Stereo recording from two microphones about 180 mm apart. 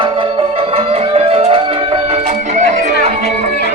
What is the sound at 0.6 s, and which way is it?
Music, 35° right (ahead or behind).